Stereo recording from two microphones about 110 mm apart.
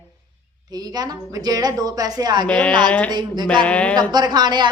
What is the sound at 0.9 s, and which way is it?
A woman's voice, 35° right (ahead or behind).